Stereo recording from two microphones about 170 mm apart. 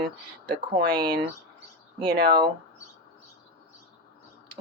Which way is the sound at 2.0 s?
70° right (ahead or behind).